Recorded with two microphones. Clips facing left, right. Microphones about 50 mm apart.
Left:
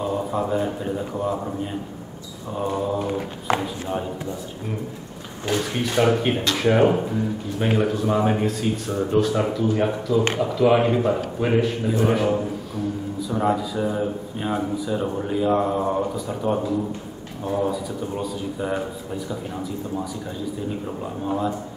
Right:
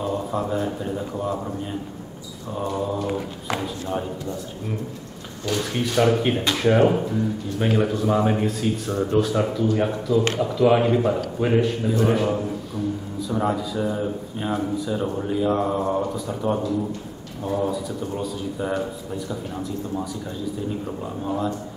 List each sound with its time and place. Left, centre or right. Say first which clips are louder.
0.0 s a man's voice: left 1 dB; centre
2.5 s speech: left 2 dB; centre
5.6 s a man's voice: right 1 dB; centre
21.2 s speech: left 1 dB; centre